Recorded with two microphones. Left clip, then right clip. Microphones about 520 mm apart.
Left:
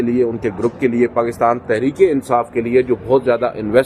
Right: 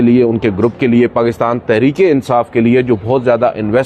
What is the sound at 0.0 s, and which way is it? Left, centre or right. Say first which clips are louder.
A man's voice: right 6 dB; right.